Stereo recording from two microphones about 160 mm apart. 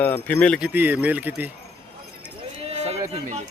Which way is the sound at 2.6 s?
40° right (ahead or behind).